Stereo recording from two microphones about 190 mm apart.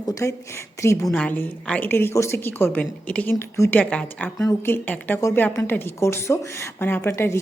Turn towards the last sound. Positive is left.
turn(degrees=15)  # may be behind; listen again after turning